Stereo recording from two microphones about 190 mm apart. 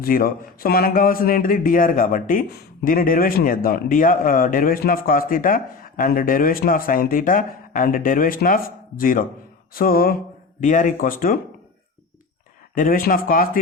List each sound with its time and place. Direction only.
0.0 s speech: 50° left (ahead or behind)
12.7 s speech: 45° left (ahead or behind)